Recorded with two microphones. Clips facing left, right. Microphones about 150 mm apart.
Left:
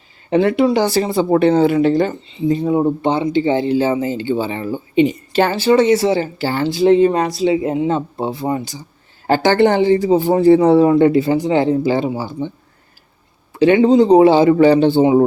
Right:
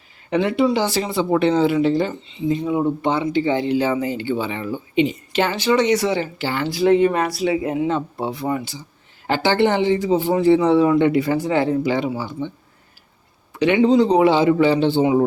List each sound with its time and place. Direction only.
0.3 s speech: 40° left (ahead or behind)
0.5 s speech: 55° left (ahead or behind)
2.6 s speech: 35° left (ahead or behind)
9.2 s speech: 45° left (ahead or behind)
11.3 s speech: 20° left (ahead or behind)
13.5 s a sound: 30° left (ahead or behind)
14.2 s speech: 40° left (ahead or behind)